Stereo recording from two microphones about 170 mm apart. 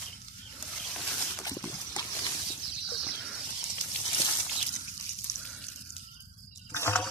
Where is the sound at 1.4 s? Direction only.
20° left (ahead or behind).